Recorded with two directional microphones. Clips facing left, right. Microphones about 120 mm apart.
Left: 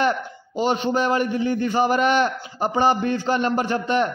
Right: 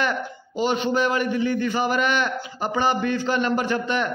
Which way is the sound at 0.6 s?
40° left (ahead or behind).